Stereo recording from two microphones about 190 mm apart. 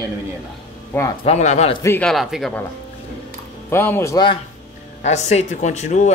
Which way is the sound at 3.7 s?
10° left (ahead or behind).